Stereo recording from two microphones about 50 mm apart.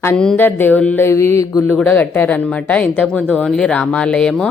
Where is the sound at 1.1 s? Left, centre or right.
Left.